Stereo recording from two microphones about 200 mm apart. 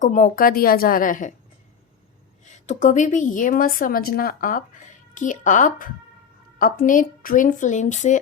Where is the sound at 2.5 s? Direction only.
35° left (ahead or behind).